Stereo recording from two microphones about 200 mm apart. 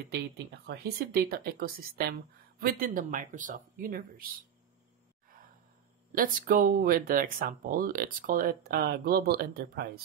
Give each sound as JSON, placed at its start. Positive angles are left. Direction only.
{"t": 0.7, "sound": "speech", "side_deg": -50}
{"t": 6.1, "sound": "speech", "side_deg": -45}